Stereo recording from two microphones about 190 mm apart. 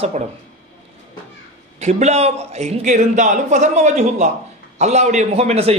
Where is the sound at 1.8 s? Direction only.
35° right (ahead or behind).